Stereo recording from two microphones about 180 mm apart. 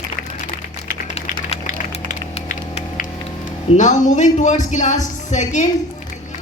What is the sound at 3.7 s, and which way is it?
Speech, 45° left (ahead or behind).